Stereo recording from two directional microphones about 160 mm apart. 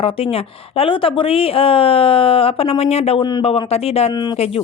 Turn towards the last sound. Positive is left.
turn(degrees=40)  # may be behind; listen again after turning